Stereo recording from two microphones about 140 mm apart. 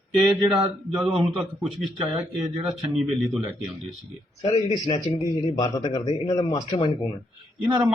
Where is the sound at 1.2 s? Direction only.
Centre (ahead or behind).